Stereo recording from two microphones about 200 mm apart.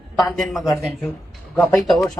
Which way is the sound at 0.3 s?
Centre (ahead or behind).